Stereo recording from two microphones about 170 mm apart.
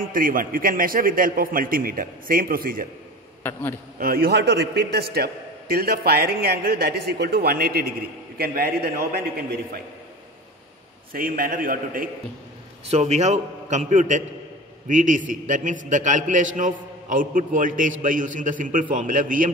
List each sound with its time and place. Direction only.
0.0 s a man's voice: 55° right (ahead or behind)
4.0 s a man's voice: 65° right (ahead or behind)
11.1 s a man's voice: 60° right (ahead or behind)
12.8 s a man's voice: 40° right (ahead or behind)